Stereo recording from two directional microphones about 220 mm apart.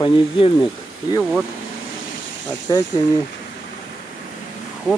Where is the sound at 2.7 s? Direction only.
20° left (ahead or behind).